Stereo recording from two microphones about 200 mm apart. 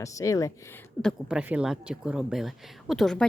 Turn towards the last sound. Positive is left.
turn(degrees=0)  # may be behind; listen again after turning